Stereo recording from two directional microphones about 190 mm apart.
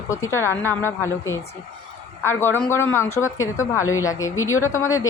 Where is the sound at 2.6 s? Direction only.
10° left (ahead or behind).